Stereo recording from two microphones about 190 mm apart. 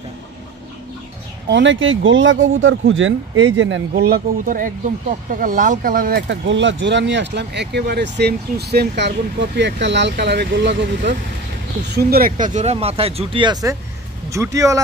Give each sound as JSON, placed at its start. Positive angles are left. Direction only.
{"t": 1.5, "sound": "speech", "side_deg": -80}
{"t": 4.0, "sound": "speech", "side_deg": -50}
{"t": 11.9, "sound": "speech", "side_deg": -55}
{"t": 12.5, "sound": "speech", "side_deg": -35}